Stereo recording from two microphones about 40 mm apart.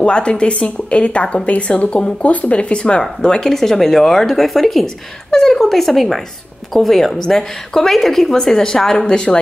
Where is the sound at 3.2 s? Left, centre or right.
Centre.